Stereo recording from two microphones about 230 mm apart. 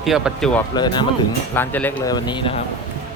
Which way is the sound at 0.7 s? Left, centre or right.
Centre.